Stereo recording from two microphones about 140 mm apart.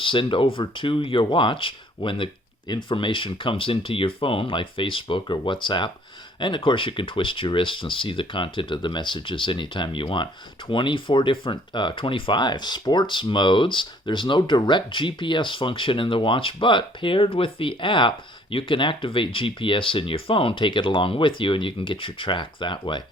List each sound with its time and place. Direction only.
0.0 s speech: 35° left (ahead or behind)